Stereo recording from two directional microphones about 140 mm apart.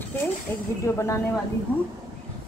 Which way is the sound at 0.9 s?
20° left (ahead or behind).